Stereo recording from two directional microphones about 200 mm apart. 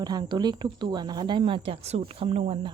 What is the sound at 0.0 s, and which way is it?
A woman's voice, 20° right (ahead or behind).